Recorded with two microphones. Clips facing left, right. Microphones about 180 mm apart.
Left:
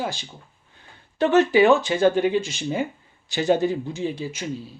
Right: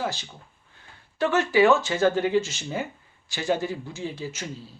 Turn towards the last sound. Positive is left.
turn(degrees=15)  # may be behind; listen again after turning